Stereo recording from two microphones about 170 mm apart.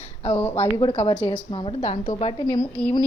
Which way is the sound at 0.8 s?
30° left (ahead or behind).